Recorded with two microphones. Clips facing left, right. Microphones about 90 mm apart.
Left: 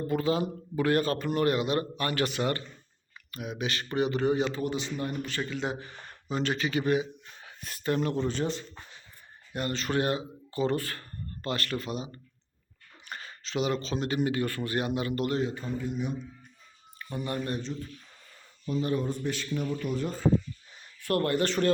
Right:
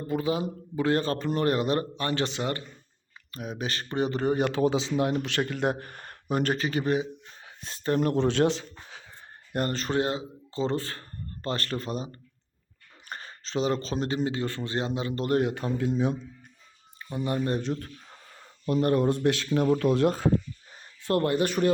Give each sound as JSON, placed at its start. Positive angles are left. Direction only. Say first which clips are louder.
{"t": 0.1, "sound": "a man's voice", "louder": "right 1 dB", "side_deg": -20}
{"t": 3.3, "sound": "speech", "louder": "even", "side_deg": -35}
{"t": 4.4, "sound": "speech", "louder": "right 5 dB", "side_deg": -65}
{"t": 8.1, "sound": "a sound", "louder": "right 6 dB", "side_deg": -75}
{"t": 9.6, "sound": "speech", "louder": "right 3 dB", "side_deg": -40}
{"t": 9.9, "sound": "a man's voice", "louder": "left 1 dB", "side_deg": -25}
{"t": 13.1, "sound": "a sound", "louder": "right 1 dB", "side_deg": -35}
{"t": 14.3, "sound": "a man's voice", "louder": "left 1 dB", "side_deg": -25}
{"t": 15.3, "sound": "speech", "louder": "right 5 dB", "side_deg": -65}
{"t": 17.0, "sound": "speech", "louder": "right 4 dB", "side_deg": -25}
{"t": 17.6, "sound": "speech", "louder": "right 5 dB", "side_deg": -60}
{"t": 21.0, "sound": "a man's voice", "louder": "right 2 dB", "side_deg": -20}